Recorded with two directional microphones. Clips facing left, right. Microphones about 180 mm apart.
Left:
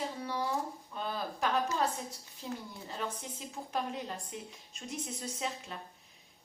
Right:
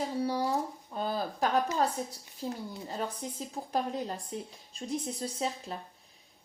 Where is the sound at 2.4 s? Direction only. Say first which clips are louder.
Right 5 dB; 40° right (ahead or behind).